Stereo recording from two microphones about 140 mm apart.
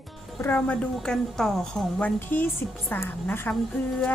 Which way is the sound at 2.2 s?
15° left (ahead or behind).